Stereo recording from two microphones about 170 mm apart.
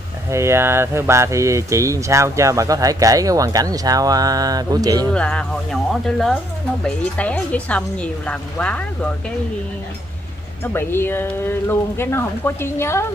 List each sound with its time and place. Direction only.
0.3 s speech: 15° right (ahead or behind)
5.1 s speech: 5° left (ahead or behind)
10.6 s speech: 15° left (ahead or behind)